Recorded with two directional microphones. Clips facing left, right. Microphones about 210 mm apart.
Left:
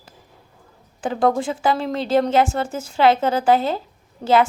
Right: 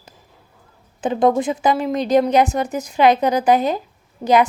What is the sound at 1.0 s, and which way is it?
A woman's voice, 20° right (ahead or behind).